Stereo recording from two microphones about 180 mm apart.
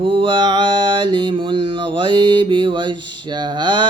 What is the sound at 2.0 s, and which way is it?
Mantra, 25° right (ahead or behind).